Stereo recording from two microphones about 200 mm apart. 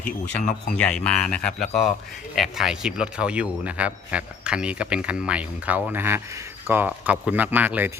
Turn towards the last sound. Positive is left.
turn(degrees=-10)  # may be behind; listen again after turning